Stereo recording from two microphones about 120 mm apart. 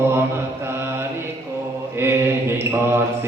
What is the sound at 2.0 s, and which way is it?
Mantra, 20° right (ahead or behind).